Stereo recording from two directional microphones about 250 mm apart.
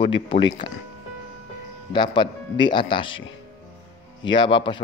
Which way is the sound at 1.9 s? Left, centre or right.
Centre.